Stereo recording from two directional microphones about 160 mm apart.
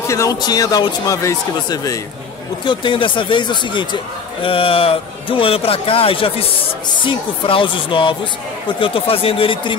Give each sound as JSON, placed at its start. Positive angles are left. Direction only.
{"t": 0.0, "sound": "speech", "side_deg": 20}